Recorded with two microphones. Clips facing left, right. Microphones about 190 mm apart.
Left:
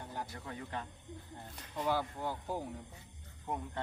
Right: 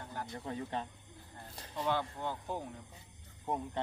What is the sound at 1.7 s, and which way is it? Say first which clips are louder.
Speech: even; 10° left (ahead or behind).